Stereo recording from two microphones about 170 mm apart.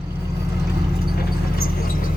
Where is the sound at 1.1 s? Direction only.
60° left (ahead or behind).